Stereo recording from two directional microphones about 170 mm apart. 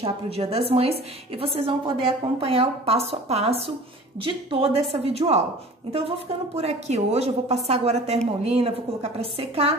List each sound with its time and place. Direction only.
0.0 s a woman's voice: 35° right (ahead or behind)